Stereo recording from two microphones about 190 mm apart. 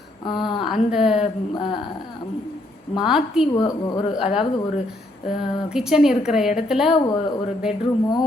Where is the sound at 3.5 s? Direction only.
20° left (ahead or behind).